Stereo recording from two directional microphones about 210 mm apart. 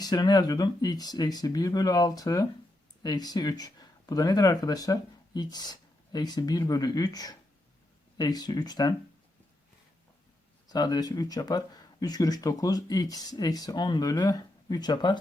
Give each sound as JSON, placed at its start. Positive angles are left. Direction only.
{"t": 0.0, "sound": "speech", "side_deg": 20}
{"t": 10.7, "sound": "speech", "side_deg": 20}